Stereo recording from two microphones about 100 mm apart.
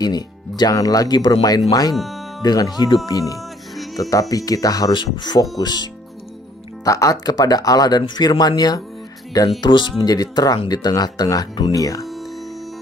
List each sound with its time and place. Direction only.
0.0 s speech: 45° left (ahead or behind)
4.9 s speech: 50° left (ahead or behind)
6.8 s speech: 35° left (ahead or behind)